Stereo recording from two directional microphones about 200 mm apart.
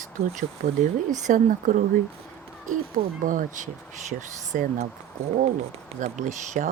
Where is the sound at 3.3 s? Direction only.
40° right (ahead or behind).